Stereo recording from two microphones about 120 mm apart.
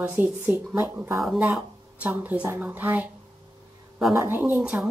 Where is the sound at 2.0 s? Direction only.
15° right (ahead or behind).